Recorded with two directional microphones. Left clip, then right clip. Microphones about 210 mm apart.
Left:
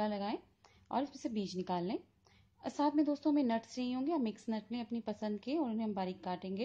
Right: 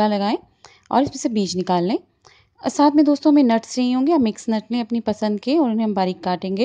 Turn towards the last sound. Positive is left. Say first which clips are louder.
# right 18 dB
turn(degrees=-40)  # may be behind; listen again after turning